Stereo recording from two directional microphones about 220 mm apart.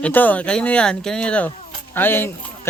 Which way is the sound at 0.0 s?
10° left (ahead or behind).